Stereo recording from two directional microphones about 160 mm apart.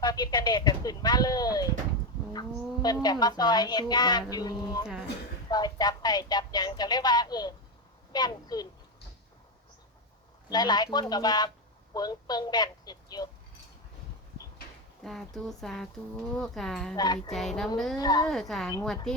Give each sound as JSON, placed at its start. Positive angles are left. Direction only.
{"t": 0.0, "sound": "a woman's voice", "side_deg": 25}
{"t": 10.5, "sound": "a woman's voice", "side_deg": 25}
{"t": 15.0, "sound": "speech", "side_deg": 0}
{"t": 17.9, "sound": "a woman's voice", "side_deg": 25}
{"t": 18.3, "sound": "speech", "side_deg": 0}